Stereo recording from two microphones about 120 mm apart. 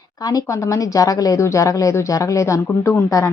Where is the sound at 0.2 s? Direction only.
30° left (ahead or behind).